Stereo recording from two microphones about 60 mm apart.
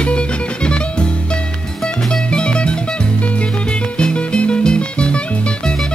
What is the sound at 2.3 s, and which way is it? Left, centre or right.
Music, centre.